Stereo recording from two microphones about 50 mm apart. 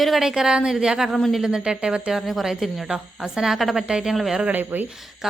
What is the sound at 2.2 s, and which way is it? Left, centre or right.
A woman's voice, centre.